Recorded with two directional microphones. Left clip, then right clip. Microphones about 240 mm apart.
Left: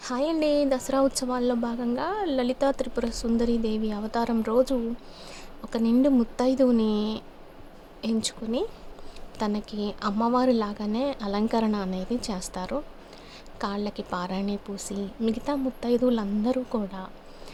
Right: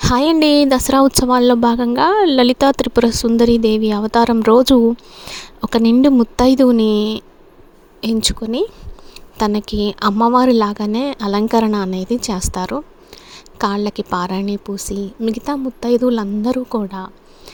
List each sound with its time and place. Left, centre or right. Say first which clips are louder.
0.0 s speech: right 12 dB; right
13.3 s a sound: right 13 dB; right
14.1 s speech: right 9 dB; right